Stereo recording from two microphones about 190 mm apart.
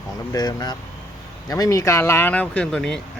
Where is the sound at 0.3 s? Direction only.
20° left (ahead or behind).